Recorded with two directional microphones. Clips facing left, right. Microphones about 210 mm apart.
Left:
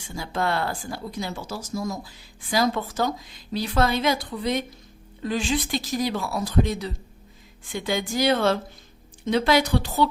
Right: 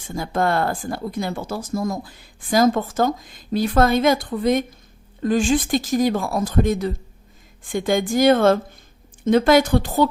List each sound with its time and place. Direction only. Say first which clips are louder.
0.0 s speech: right 5 dB; 50° right (ahead or behind)